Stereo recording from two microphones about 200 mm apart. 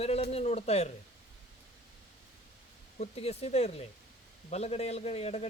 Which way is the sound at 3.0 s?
30° left (ahead or behind).